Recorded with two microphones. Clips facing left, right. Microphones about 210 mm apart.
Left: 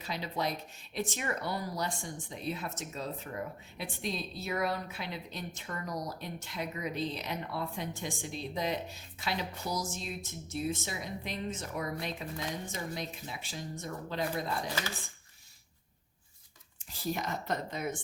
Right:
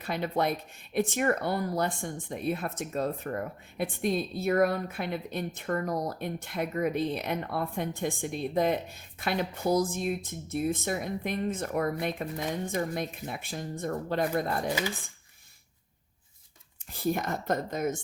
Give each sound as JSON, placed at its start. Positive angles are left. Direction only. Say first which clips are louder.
{"t": 0.0, "sound": "speech", "louder": "right 6 dB", "side_deg": -55}
{"t": 16.9, "sound": "speech", "louder": "right 6 dB", "side_deg": -55}